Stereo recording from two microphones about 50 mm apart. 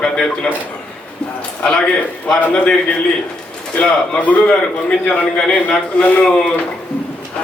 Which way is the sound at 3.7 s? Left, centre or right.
Left.